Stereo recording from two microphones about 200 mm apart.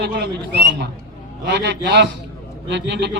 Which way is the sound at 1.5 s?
55° right (ahead or behind).